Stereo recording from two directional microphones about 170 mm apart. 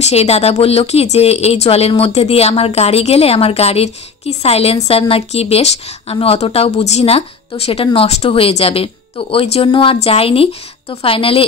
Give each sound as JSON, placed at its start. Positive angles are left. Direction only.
{"t": 0.0, "sound": "speech", "side_deg": 40}